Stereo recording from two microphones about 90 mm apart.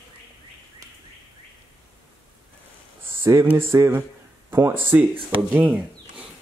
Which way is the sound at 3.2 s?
30° right (ahead or behind).